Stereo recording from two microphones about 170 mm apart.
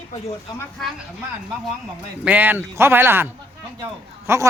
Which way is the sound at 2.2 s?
10° right (ahead or behind).